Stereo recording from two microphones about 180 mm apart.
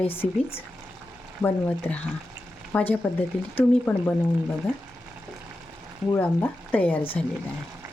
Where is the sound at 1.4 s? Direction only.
10° left (ahead or behind).